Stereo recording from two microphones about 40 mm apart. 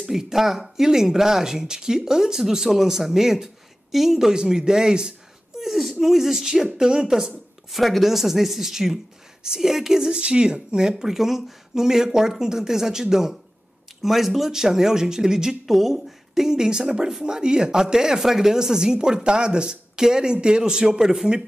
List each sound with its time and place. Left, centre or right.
0.1 s speech: centre
5.6 s speech: centre
15.6 s speech: centre